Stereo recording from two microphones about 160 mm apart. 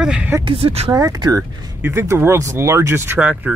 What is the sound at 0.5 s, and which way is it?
Speech, 35° right (ahead or behind).